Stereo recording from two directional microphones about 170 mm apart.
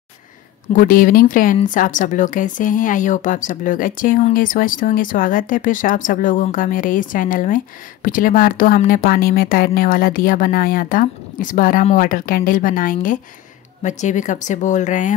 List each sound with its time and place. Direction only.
0.7 s speech: 55° left (ahead or behind)